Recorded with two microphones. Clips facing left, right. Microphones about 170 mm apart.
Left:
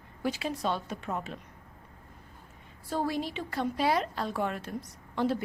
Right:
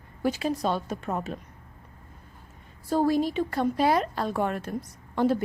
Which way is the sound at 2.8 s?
40° right (ahead or behind).